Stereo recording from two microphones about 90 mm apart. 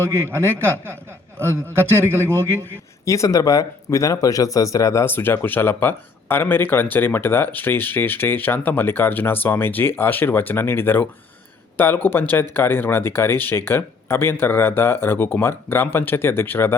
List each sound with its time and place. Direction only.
0.0 s a man's voice: 30° right (ahead or behind)
3.1 s speech: 35° left (ahead or behind)
5.0 s speech: 25° left (ahead or behind)